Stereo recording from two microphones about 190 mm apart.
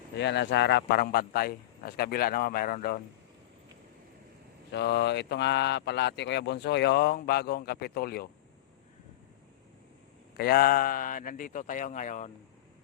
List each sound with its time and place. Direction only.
0.2 s a man's voice: 65° left (ahead or behind); by 3.0 s 45° left (ahead or behind)
4.7 s speech: 60° left (ahead or behind)
10.3 s a man's voice: 55° left (ahead or behind)